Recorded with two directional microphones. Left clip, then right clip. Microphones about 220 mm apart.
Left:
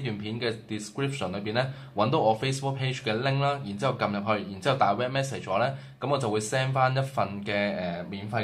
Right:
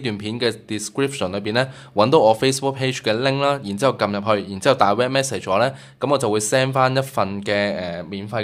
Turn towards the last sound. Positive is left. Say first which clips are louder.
# right 7 dB
turn(degrees=-45)  # may be behind; listen again after turning